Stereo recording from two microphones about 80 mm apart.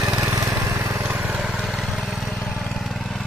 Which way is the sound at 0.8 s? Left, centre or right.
Right.